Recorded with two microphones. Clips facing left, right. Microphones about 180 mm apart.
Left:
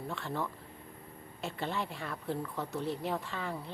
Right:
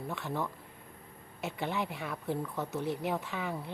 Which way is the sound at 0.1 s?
15° right (ahead or behind).